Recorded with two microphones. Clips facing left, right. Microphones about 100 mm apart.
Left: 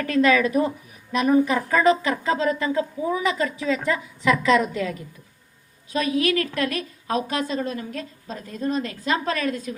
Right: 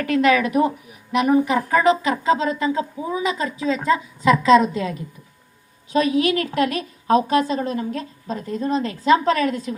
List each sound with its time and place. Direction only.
0.1 s speech: 20° right (ahead or behind)